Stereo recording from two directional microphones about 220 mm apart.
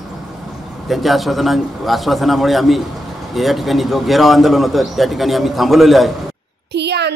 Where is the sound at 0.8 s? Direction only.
Centre (ahead or behind).